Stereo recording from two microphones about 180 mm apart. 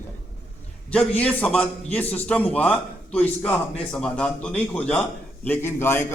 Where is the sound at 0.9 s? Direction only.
5° left (ahead or behind).